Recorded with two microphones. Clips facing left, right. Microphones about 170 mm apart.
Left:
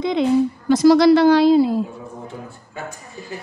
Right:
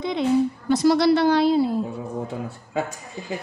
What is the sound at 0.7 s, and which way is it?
A woman's voice, 90° left.